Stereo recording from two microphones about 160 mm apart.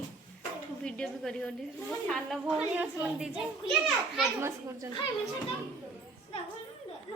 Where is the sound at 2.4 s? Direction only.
10° right (ahead or behind).